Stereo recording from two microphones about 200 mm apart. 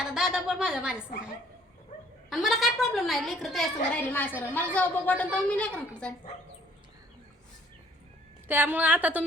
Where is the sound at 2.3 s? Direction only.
Centre (ahead or behind).